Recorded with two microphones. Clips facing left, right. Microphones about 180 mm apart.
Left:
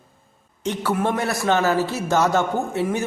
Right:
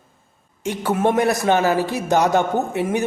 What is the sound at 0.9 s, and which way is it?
A man's voice, 20° right (ahead or behind).